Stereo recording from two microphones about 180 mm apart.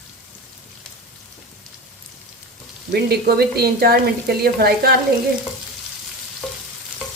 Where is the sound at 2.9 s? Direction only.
60° right (ahead or behind).